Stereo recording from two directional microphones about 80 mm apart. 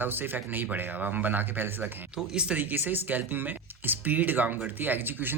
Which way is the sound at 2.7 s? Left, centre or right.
Right.